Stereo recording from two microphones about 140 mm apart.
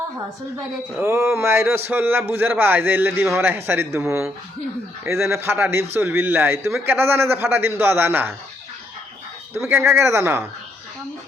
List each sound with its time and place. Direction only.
0.5 s speech: 15° right (ahead or behind)
5.3 s speech: 15° right (ahead or behind)
9.6 s speech: 15° right (ahead or behind)